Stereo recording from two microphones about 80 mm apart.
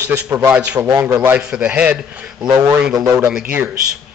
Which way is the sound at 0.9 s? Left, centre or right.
Right.